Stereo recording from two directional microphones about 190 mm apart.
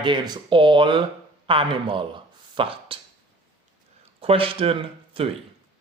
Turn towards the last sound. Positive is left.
turn(degrees=-30)  # may be behind; listen again after turning